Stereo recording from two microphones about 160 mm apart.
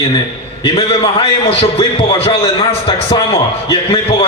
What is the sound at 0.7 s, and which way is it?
A man's voice, 35° left (ahead or behind).